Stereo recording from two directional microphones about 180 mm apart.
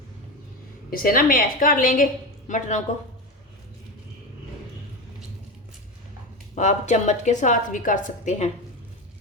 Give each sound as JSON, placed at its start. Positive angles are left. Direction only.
{"t": 0.9, "sound": "a woman's voice", "side_deg": 55}
{"t": 6.6, "sound": "a woman's voice", "side_deg": 40}